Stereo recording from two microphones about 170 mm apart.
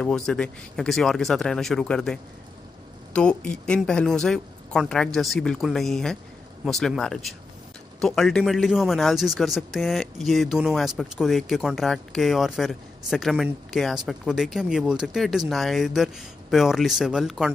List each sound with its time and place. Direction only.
0.0 s speech: 5° left (ahead or behind)